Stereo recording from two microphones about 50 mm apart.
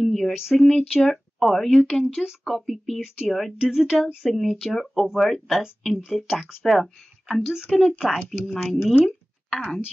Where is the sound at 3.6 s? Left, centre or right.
Centre.